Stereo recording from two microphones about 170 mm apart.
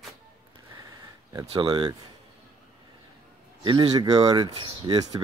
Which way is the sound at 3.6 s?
25° right (ahead or behind).